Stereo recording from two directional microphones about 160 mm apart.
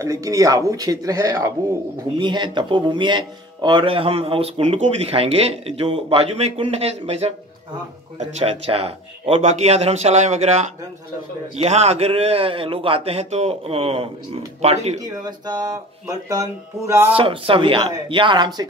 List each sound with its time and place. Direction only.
0.0 s speech: 20° right (ahead or behind)
2.1 s speech: 30° right (ahead or behind)
15.0 s speech: 25° right (ahead or behind)
17.1 s speech: 35° right (ahead or behind)